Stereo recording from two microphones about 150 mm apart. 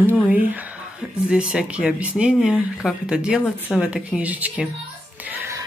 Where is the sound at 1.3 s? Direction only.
5° right (ahead or behind).